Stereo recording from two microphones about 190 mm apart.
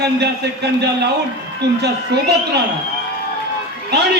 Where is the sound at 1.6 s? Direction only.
60° right (ahead or behind).